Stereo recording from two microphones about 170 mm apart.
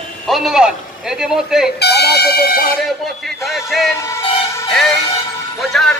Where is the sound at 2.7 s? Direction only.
Centre (ahead or behind).